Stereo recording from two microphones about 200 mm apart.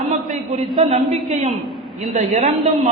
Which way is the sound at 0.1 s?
35° right (ahead or behind).